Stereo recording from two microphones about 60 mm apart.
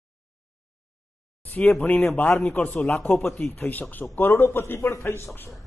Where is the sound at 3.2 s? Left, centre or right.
Centre.